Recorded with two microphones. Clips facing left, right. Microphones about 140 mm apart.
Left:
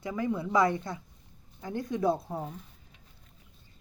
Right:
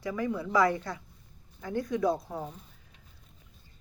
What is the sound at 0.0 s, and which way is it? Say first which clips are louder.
Speech: even; 25° left (ahead or behind).